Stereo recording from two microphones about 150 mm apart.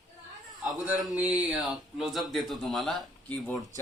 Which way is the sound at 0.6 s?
5° right (ahead or behind).